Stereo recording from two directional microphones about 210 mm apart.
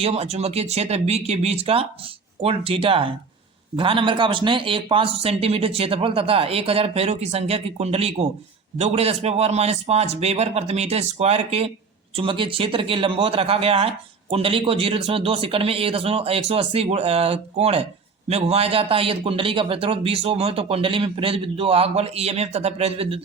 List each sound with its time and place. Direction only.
0.0 s a man's voice: 30° right (ahead or behind)